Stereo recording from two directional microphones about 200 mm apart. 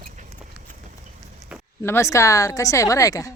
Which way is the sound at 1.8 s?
15° left (ahead or behind).